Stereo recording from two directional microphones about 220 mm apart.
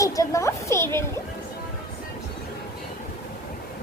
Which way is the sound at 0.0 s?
15° left (ahead or behind).